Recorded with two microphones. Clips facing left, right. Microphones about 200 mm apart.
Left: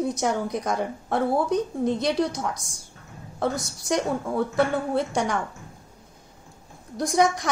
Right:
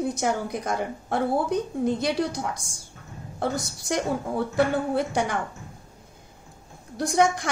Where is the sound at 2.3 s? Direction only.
30° right (ahead or behind).